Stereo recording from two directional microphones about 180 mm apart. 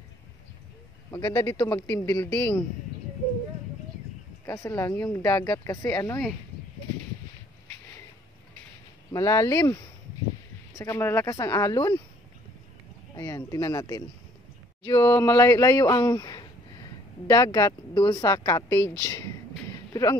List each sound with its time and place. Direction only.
1.1 s speech: 20° left (ahead or behind)
4.5 s speech: 15° left (ahead or behind)
9.1 s speech: 15° left (ahead or behind)
10.8 s speech: 15° left (ahead or behind)
13.1 s speech: 20° left (ahead or behind)
18.8 s a sound: 20° left (ahead or behind)